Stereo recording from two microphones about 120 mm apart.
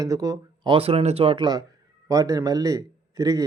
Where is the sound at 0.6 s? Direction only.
50° right (ahead or behind).